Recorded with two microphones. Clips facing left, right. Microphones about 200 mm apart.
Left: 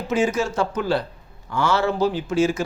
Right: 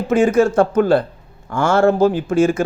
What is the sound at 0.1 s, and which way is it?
Speech, 55° right (ahead or behind).